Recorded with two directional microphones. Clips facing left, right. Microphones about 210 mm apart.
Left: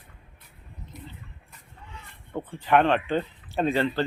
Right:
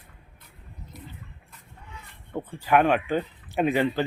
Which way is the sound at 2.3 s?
5° right (ahead or behind).